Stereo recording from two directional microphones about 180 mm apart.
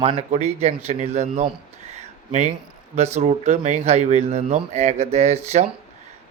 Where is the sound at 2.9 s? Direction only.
40° right (ahead or behind).